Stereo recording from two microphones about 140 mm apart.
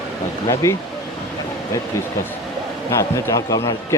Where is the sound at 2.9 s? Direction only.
25° left (ahead or behind).